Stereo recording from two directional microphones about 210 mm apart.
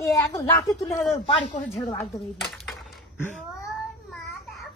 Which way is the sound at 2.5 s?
Centre (ahead or behind).